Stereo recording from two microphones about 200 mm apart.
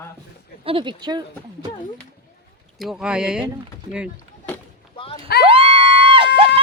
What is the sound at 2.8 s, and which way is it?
Speech, 5° right (ahead or behind).